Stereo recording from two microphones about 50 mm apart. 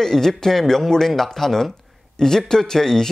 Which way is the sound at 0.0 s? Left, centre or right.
Centre.